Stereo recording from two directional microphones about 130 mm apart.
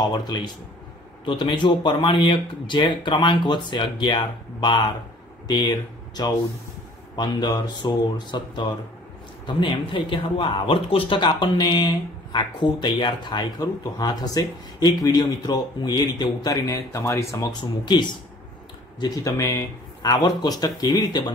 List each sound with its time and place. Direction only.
0.1 s speech: 35° left (ahead or behind)